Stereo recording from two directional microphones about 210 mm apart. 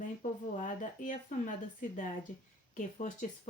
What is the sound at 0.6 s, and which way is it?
Speech, 40° left (ahead or behind).